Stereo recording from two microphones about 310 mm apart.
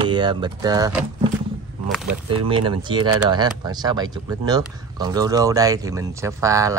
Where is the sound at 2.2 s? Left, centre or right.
Centre.